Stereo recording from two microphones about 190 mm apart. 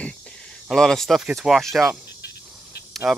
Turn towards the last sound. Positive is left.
turn(degrees=0)  # may be behind; listen again after turning